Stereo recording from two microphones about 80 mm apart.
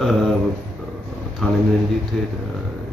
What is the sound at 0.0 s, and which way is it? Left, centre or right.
Speech, centre.